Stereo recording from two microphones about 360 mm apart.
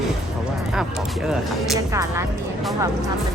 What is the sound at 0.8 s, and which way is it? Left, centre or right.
A woman's voice, centre.